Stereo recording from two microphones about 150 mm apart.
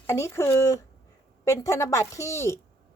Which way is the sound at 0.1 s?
20° left (ahead or behind).